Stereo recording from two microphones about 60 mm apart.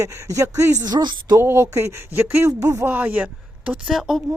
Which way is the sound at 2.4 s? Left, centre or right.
Right.